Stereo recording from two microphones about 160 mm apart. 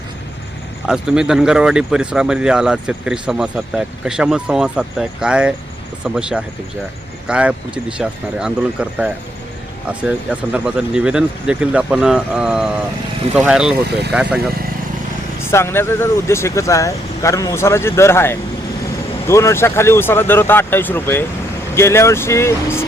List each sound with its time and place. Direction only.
0.9 s speech: 5° right (ahead or behind)
15.4 s speech: 15° left (ahead or behind)